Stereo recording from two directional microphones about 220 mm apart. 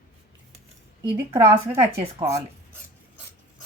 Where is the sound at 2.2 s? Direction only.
15° right (ahead or behind).